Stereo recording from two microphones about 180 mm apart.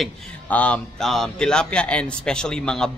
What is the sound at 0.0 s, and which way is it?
A man's voice, 5° left (ahead or behind).